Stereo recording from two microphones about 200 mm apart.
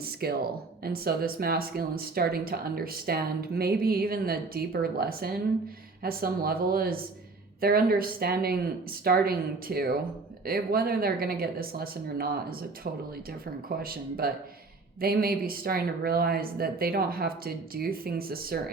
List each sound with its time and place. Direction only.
0.0 s speech: 50° right (ahead or behind)